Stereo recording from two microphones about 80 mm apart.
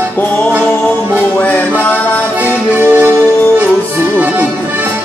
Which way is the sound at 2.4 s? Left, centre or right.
Right.